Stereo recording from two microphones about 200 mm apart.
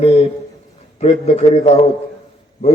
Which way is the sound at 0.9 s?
35° left (ahead or behind).